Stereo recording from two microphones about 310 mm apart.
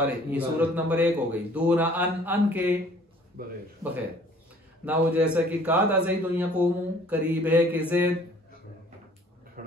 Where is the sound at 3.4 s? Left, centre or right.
Right.